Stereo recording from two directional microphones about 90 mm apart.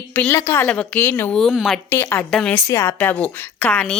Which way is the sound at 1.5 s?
5° right (ahead or behind).